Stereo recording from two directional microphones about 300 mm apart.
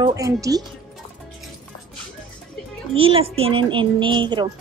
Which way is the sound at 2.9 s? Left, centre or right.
Centre.